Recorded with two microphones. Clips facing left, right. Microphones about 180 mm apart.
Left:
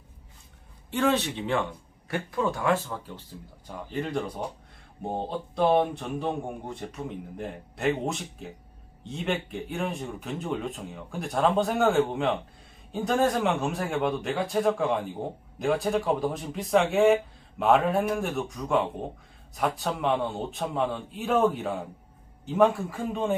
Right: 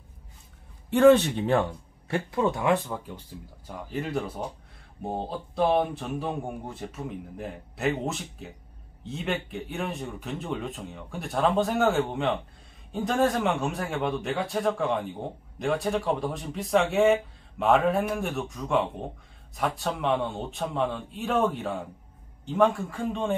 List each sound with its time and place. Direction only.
0.9 s a man's voice: 55° right (ahead or behind)
1.5 s speech: 30° right (ahead or behind)
3.6 s speech: 5° right (ahead or behind)